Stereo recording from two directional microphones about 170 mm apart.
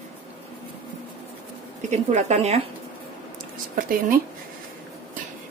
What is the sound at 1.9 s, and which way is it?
Speech, 45° right (ahead or behind).